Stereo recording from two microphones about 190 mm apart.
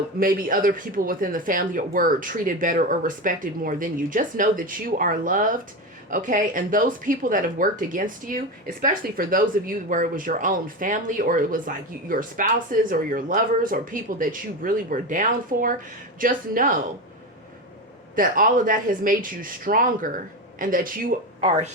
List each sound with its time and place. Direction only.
0.2 s speech: 50° right (ahead or behind)
18.2 s speech: 45° right (ahead or behind)